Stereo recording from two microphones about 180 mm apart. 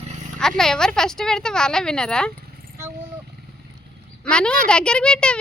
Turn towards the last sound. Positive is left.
turn(degrees=5)  # may be behind; listen again after turning